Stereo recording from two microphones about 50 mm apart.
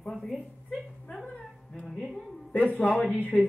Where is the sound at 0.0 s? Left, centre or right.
Centre.